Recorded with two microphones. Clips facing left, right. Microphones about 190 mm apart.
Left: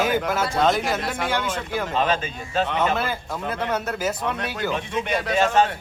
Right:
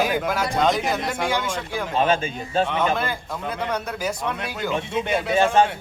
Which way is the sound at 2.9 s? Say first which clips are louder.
Even; 5° left (ahead or behind).